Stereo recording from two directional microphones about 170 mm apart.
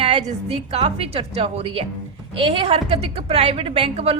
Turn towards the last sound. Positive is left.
turn(degrees=-35)  # may be behind; listen again after turning